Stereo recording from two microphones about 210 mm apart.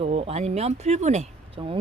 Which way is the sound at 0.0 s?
30° right (ahead or behind).